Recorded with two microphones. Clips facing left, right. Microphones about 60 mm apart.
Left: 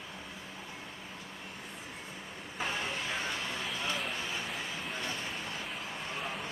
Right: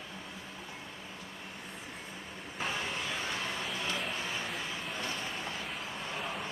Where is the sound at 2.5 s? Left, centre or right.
Left.